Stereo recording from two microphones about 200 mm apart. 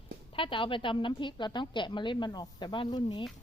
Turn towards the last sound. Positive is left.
turn(degrees=20)  # may be behind; listen again after turning